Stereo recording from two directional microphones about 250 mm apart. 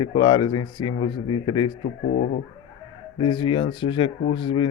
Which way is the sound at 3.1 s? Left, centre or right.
Centre.